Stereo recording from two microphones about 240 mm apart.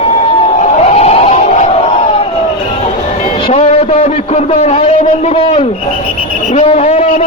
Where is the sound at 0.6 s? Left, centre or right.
Left.